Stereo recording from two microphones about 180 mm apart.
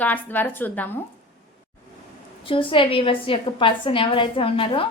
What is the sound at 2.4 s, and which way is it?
Speech, 30° left (ahead or behind).